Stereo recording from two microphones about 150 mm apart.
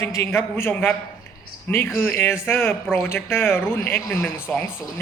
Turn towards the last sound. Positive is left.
turn(degrees=15)  # may be behind; listen again after turning